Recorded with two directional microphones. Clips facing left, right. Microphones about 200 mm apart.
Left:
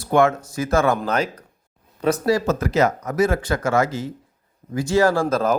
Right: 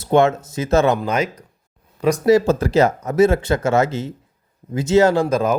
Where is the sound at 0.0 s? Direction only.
25° right (ahead or behind).